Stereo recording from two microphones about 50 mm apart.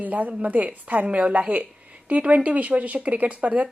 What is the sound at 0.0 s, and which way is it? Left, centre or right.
A woman's voice, right.